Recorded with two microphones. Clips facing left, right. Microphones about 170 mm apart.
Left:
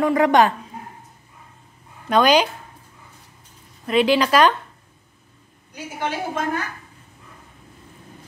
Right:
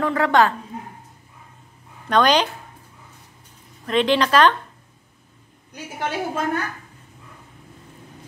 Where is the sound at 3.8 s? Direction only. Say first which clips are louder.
Left 1 dB; 10° left (ahead or behind).